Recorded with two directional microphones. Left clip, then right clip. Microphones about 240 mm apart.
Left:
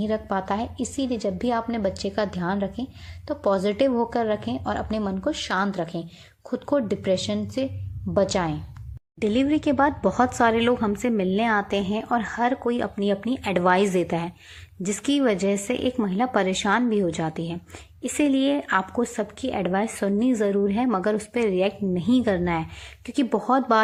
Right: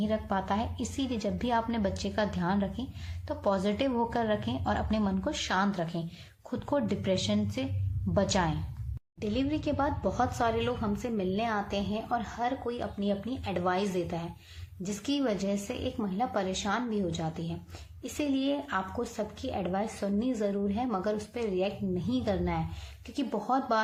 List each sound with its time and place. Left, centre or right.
0.0 s a woman's voice: left